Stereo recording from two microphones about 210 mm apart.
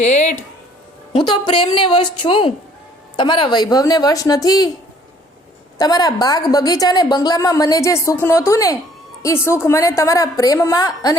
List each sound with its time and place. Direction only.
0.0 s speech: 35° left (ahead or behind)
1.1 s speech: 20° left (ahead or behind)
5.7 s a woman's voice: 20° left (ahead or behind)